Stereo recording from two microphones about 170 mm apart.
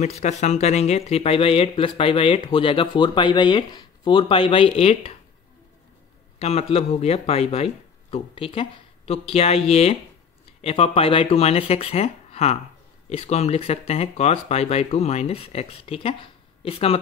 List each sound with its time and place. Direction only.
0.0 s speech: 45° left (ahead or behind)
6.4 s speech: 40° left (ahead or behind)